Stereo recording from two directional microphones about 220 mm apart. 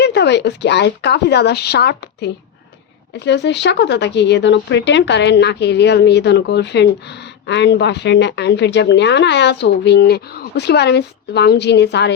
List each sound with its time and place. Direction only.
0.0 s speech: 50° left (ahead or behind)